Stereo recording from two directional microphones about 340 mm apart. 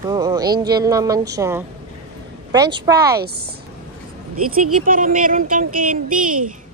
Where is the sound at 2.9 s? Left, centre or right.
Right.